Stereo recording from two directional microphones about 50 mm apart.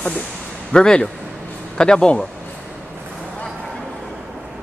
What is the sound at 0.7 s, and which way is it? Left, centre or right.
Speech, centre.